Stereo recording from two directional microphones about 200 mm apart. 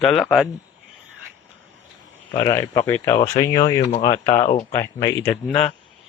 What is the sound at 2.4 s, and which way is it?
Speech, 15° left (ahead or behind).